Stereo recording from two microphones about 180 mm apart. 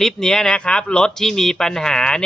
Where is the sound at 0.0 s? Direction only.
5° left (ahead or behind).